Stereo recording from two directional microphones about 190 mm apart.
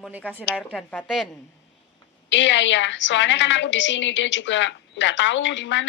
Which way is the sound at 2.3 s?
75° left (ahead or behind).